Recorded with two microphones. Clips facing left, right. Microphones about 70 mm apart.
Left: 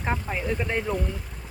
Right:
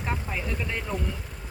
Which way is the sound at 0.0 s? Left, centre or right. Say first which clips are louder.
Left 3 dB; left.